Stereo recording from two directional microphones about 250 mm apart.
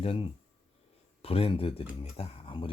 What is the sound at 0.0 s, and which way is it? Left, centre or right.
Speech, left.